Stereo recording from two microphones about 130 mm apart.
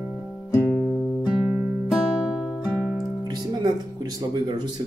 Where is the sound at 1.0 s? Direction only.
5° right (ahead or behind).